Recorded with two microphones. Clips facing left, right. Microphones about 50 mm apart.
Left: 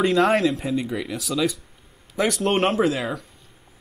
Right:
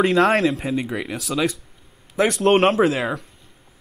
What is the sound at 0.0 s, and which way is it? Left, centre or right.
Speech, centre.